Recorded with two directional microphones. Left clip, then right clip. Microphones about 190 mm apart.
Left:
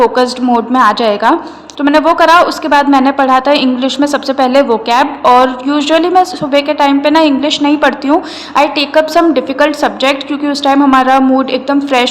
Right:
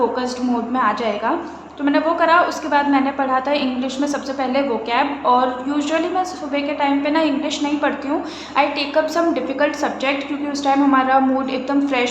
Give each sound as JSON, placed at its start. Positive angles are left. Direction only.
{"t": 0.7, "sound": "a woman's voice", "side_deg": 50}